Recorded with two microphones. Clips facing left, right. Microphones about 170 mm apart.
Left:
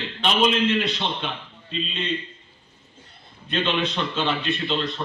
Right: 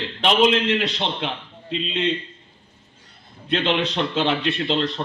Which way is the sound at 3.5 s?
85° right.